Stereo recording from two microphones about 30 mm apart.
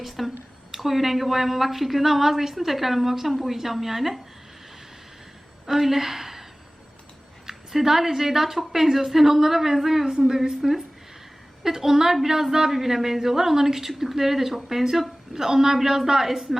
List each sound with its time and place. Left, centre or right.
0.2 s a woman's voice: centre
5.6 s a woman's voice: centre
7.4 s a woman's voice: centre
10.1 s a woman's voice: centre
10.6 s a woman's voice: centre
11.6 s a woman's voice: centre